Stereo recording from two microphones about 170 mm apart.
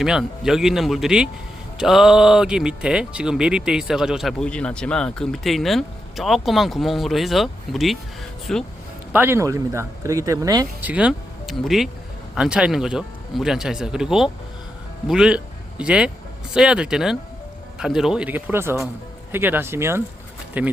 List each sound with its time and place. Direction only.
0.0 s speech: 5° right (ahead or behind)
9.1 s speech: 15° right (ahead or behind)
10.8 s speech: 5° right (ahead or behind)